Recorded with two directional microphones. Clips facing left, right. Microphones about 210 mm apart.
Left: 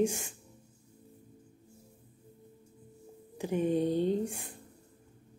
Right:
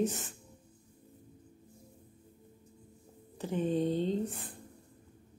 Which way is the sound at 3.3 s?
10° left (ahead or behind).